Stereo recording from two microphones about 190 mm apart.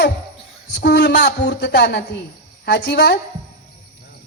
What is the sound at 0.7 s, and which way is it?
A man's voice, 60° left (ahead or behind).